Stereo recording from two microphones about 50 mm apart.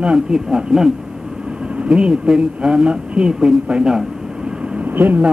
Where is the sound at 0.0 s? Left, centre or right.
Centre.